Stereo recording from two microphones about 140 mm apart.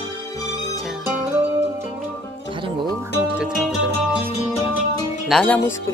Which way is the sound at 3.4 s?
5° right (ahead or behind).